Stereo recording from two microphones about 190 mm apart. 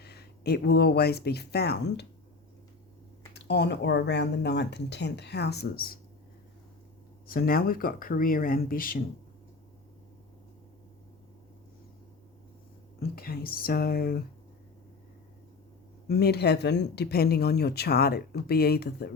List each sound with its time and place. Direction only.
0.0 s speech: 55° left (ahead or behind)
3.3 s speech: 65° left (ahead or behind)
7.3 s speech: 50° left (ahead or behind)
13.0 s speech: 55° left (ahead or behind)
16.0 s speech: 60° left (ahead or behind)